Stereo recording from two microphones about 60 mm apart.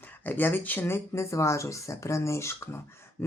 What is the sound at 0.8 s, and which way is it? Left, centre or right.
Speech, left.